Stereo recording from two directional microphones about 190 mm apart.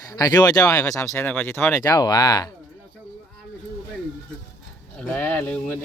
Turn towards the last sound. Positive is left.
turn(degrees=10)  # may be behind; listen again after turning